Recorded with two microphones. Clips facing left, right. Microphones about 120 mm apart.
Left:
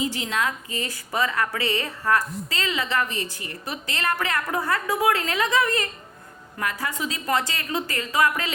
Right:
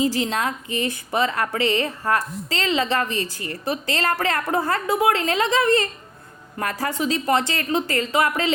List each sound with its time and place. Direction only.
0.0 s a woman's voice: 35° right (ahead or behind)
6.6 s a woman's voice: 40° right (ahead or behind)